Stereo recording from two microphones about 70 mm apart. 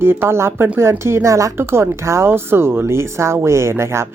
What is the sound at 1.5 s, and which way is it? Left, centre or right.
Speech, right.